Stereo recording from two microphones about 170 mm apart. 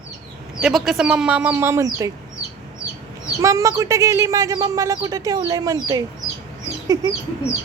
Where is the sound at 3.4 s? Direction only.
20° right (ahead or behind).